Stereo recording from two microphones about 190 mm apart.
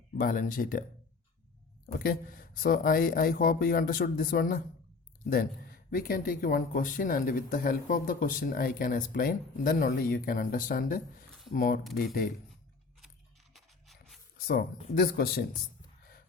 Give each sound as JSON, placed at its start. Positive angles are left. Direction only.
{"t": 0.2, "sound": "speech", "side_deg": 45}
{"t": 1.9, "sound": "speech", "side_deg": 50}
{"t": 13.5, "sound": "a sound", "side_deg": 0}
{"t": 14.3, "sound": "speech", "side_deg": 50}